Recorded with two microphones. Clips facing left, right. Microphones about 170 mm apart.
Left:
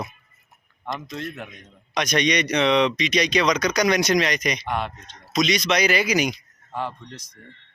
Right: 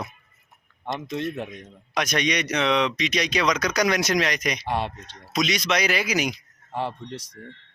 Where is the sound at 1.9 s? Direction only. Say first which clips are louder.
Left 3 dB; 5° right (ahead or behind).